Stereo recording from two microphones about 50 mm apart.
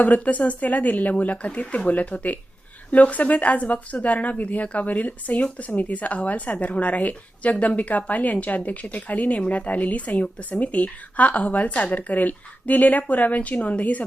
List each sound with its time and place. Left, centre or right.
0.0 s a woman's voice: left